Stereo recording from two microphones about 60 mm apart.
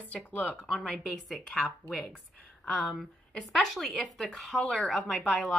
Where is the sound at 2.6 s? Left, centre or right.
Centre.